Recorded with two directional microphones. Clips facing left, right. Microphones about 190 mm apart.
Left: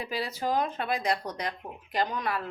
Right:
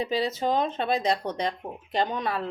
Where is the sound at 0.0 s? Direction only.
25° right (ahead or behind).